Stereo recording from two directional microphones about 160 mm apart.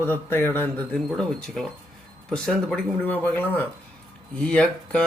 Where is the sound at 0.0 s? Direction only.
15° left (ahead or behind).